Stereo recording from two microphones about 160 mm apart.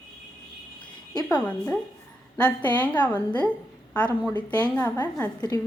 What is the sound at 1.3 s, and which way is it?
A woman's voice, 10° left (ahead or behind).